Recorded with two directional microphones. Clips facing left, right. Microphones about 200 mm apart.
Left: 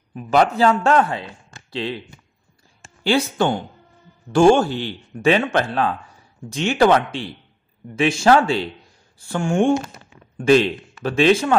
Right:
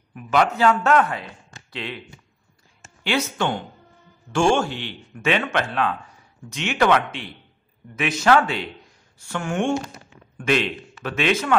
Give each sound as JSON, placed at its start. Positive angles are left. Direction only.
{"t": 0.1, "sound": "speech", "side_deg": 35}
{"t": 3.0, "sound": "speech", "side_deg": 35}